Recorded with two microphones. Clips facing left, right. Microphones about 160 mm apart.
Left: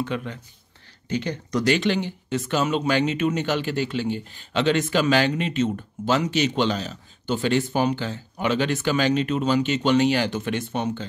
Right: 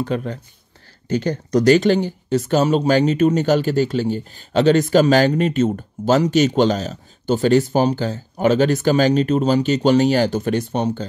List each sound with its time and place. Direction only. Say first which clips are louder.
0.0 s speech: right 5 dB; 40° right (ahead or behind)